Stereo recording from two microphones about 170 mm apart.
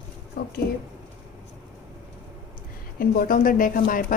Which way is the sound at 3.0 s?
55° left (ahead or behind).